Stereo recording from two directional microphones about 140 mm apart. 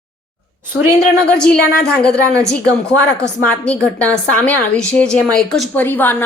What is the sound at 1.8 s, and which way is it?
Speech, 5° left (ahead or behind).